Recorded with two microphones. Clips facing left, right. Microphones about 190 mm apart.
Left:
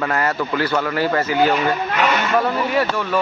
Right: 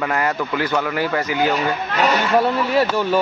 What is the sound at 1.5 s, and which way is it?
Speech, 35° right (ahead or behind).